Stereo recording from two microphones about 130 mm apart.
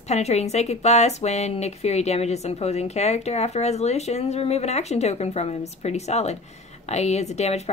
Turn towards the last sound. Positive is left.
turn(degrees=55)  # may be behind; listen again after turning